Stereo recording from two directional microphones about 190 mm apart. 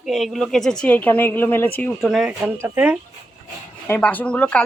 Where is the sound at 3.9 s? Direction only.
10° left (ahead or behind).